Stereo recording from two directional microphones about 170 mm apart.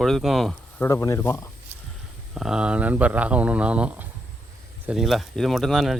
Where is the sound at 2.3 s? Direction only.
5° right (ahead or behind).